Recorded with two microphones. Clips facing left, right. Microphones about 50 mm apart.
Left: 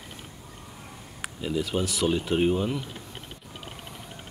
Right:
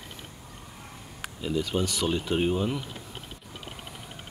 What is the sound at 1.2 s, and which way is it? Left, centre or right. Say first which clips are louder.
Speech: even; centre.